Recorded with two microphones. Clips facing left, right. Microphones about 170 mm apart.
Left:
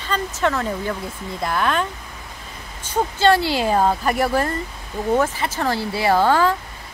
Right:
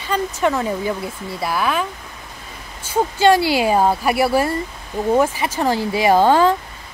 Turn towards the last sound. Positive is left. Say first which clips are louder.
# right 3 dB
turn(degrees=-20)  # may be behind; listen again after turning